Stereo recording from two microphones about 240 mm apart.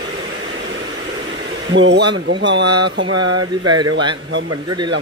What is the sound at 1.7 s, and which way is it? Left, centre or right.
Speech, right.